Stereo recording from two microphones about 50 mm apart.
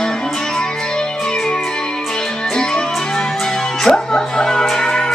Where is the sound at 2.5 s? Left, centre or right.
Centre.